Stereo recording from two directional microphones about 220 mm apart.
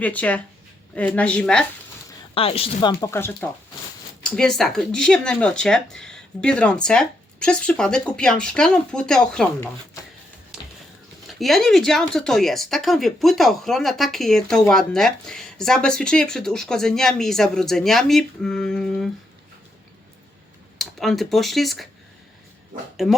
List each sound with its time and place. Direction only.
0.0 s speech: 5° left (ahead or behind)
2.3 s speech: 25° left (ahead or behind); by 9.6 s 5° left (ahead or behind)
11.3 s speech: centre (ahead or behind)
20.7 s speech: centre (ahead or behind)